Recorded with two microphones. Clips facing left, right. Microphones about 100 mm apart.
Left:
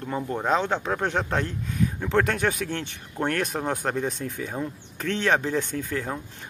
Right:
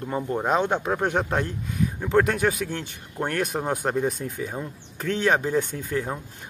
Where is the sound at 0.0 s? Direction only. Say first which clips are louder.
Right 2 dB; 15° right (ahead or behind).